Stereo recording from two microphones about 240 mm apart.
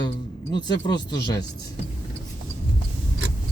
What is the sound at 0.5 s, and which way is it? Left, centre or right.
Speech, centre.